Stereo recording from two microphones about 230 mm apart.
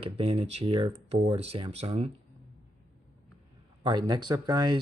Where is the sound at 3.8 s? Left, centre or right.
Centre.